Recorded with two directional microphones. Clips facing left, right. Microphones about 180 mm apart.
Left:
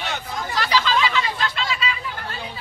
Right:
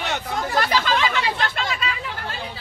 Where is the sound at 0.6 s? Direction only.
50° right (ahead or behind).